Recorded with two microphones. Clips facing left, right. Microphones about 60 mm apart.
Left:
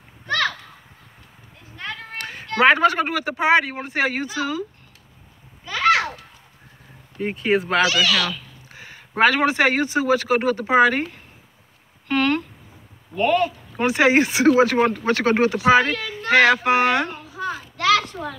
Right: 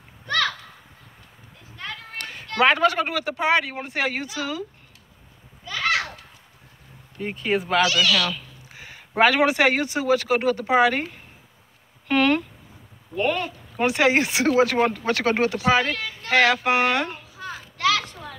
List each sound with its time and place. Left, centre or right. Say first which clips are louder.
2.1 s a sound: left 2 dB; centre
2.4 s speech: left 3 dB; centre
7.2 s speech: left 4 dB; centre
8.3 s speech: even; centre
12.1 s a sound: right 1 dB; centre
13.1 s speech: left 5 dB; centre
15.6 s speech: left 6 dB; centre
16.5 s speech: left 3 dB; centre
17.4 s children playing: left 1 dB; left